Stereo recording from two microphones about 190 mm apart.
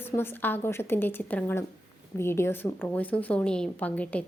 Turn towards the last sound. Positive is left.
turn(degrees=5)  # may be behind; listen again after turning